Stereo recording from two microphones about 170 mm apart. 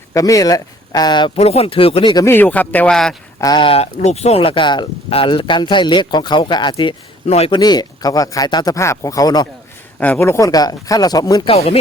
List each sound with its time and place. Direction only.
0.1 s speech: 20° left (ahead or behind)
2.3 s speech: 10° left (ahead or behind)
3.4 s speech: 30° left (ahead or behind)
7.6 s speech: 25° left (ahead or behind)
10.0 s speech: 10° left (ahead or behind)
11.5 s speech: 35° left (ahead or behind)